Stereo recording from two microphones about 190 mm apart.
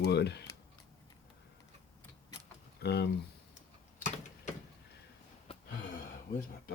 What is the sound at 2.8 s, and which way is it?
Speech, 60° left (ahead or behind).